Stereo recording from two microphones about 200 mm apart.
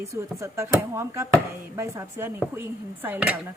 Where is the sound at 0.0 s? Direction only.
15° right (ahead or behind).